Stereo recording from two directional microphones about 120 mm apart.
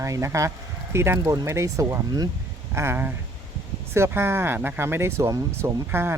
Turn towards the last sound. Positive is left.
turn(degrees=-20)  # may be behind; listen again after turning